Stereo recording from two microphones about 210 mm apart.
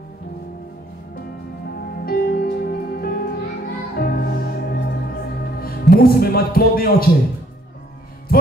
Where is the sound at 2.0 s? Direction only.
45° left (ahead or behind).